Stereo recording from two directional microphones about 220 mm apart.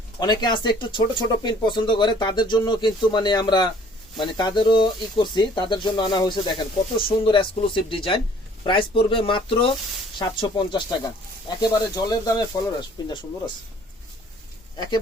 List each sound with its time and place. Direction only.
0.2 s speech: 20° left (ahead or behind)